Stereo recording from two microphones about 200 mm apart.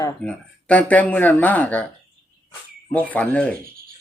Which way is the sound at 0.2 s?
5° left (ahead or behind).